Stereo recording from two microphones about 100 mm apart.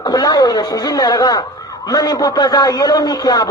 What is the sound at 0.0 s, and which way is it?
A man's voice, 40° left (ahead or behind).